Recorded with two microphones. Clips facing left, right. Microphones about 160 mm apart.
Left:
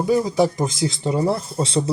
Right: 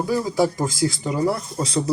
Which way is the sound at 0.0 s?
20° left (ahead or behind).